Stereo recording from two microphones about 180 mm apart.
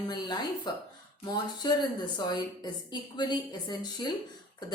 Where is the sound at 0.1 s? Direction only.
25° left (ahead or behind).